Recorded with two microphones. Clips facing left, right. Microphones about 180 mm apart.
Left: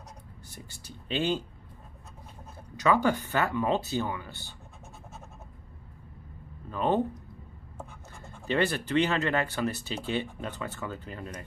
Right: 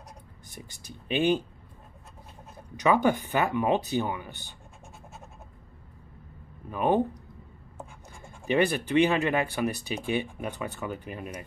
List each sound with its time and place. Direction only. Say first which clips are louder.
0.5 s speech: right 3 dB; 15° right (ahead or behind)
2.8 s speech: right 2 dB; 15° right (ahead or behind)
6.7 s speech: right 2 dB; 15° right (ahead or behind)